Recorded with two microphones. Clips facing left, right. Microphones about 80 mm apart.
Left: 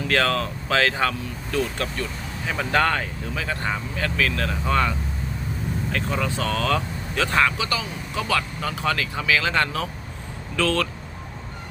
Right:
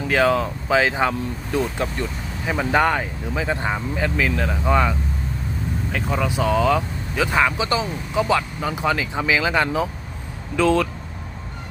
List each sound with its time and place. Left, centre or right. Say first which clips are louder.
0.0 s speech: right 4 dB; centre